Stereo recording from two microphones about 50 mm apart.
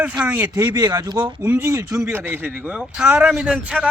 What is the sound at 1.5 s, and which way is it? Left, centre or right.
Speech, right.